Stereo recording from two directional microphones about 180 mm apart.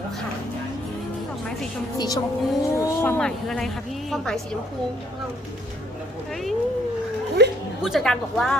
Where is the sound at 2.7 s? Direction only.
10° left (ahead or behind).